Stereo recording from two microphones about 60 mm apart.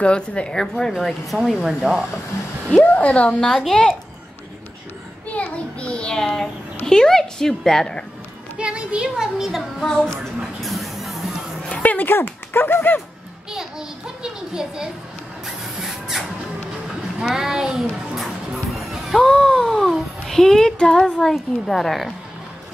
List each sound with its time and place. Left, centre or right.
0.0 s a woman's voice: centre
2.8 s a woman's voice: left
3.3 s a woman's voice: centre
5.3 s a child's voice: left
8.5 s speech: centre
9.8 s a woman's voice: centre
10.4 s a sound: centre
11.7 s dog: left
12.2 s speech: left
13.5 s a sound: centre
17.2 s music: centre
21.6 s speech: centre